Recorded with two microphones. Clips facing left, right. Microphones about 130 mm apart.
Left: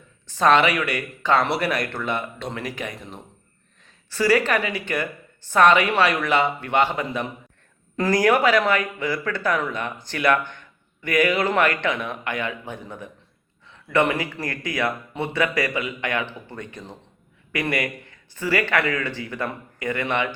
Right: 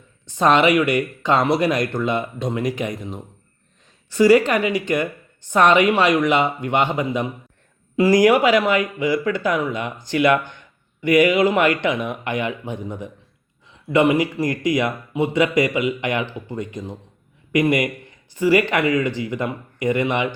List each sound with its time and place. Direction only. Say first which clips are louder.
0.3 s a woman's voice: right 2 dB; 20° right (ahead or behind)
4.1 s a woman's voice: right 6 dB; 20° right (ahead or behind)